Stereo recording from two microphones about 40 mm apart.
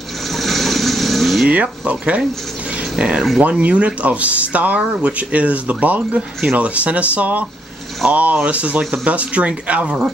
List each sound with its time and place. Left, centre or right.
0.3 s vehicle: centre
1.5 s speech: right
2.7 s a sound: right
3.3 s speech: right